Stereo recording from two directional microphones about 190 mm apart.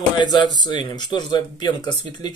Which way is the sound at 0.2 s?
25° left (ahead or behind).